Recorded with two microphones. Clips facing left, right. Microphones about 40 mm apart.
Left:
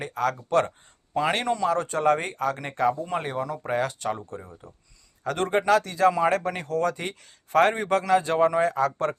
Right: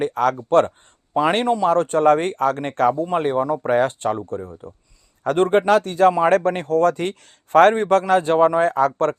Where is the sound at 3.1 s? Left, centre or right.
Right.